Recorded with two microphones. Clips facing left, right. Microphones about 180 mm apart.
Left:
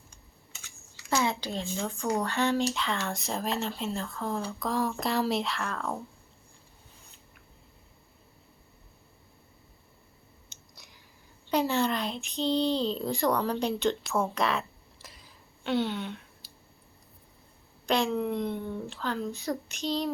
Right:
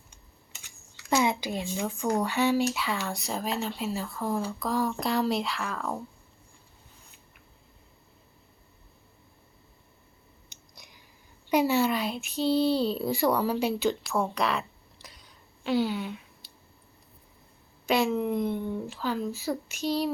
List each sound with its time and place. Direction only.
1.1 s speech: 15° right (ahead or behind)
10.5 s chewing: 15° right (ahead or behind)
11.4 s speech: 10° right (ahead or behind)
15.0 s a sound: centre (ahead or behind)
17.8 s speech: 5° right (ahead or behind)